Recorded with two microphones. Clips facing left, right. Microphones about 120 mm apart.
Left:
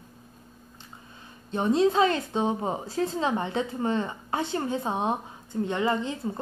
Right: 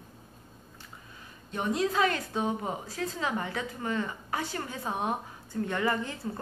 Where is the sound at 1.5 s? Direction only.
30° left (ahead or behind).